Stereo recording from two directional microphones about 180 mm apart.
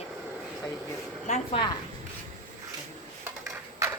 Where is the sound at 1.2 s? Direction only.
35° left (ahead or behind).